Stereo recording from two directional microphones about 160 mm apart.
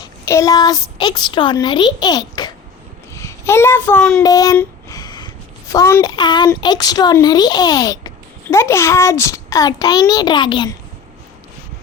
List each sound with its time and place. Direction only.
0.0 s a child's voice: 20° left (ahead or behind)
4.9 s a sound: 25° left (ahead or behind)
6.6 s a child's voice: 25° left (ahead or behind)